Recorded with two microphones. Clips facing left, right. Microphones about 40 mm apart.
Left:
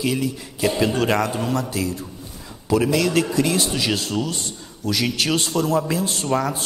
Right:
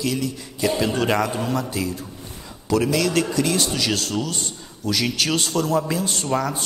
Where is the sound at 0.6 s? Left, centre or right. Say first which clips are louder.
Left 1 dB; centre.